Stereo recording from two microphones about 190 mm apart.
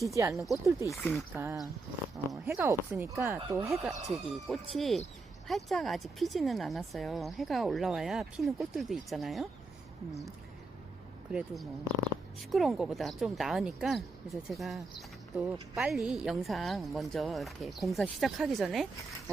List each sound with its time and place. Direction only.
0.0 s speech: 15° right (ahead or behind)
0.9 s speech: centre (ahead or behind)
2.3 s speech: centre (ahead or behind)
3.7 s speech: centre (ahead or behind)
11.3 s speech: 5° right (ahead or behind)